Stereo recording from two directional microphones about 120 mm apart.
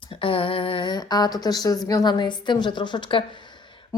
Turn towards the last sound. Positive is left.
turn(degrees=45)  # may be behind; listen again after turning